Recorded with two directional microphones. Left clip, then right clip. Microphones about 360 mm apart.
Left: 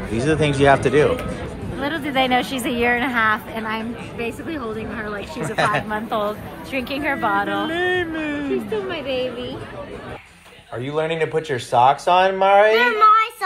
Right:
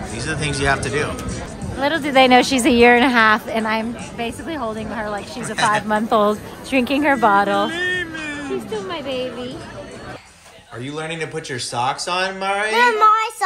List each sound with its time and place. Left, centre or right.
0.1 s speech: centre
1.8 s a woman's voice: right
5.4 s speech: centre
5.9 s a woman's voice: right
7.7 s music: centre
8.8 s speech: centre
10.9 s speech: centre
12.9 s child singing: right